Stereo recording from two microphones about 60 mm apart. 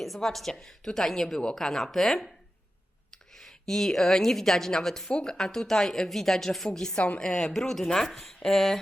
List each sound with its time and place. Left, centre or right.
0.0 s a woman's voice: centre
3.3 s a woman's voice: centre
6.9 s a woman's voice: left
7.3 s a woman's voice: centre